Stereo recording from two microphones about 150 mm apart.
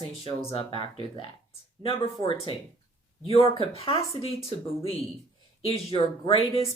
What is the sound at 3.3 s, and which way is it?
Speech, 40° left (ahead or behind).